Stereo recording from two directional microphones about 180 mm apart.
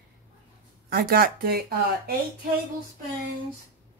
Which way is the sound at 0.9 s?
55° right (ahead or behind).